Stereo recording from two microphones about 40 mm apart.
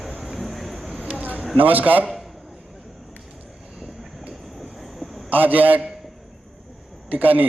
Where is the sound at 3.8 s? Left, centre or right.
Right.